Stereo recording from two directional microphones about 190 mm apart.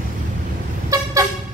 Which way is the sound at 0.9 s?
15° right (ahead or behind).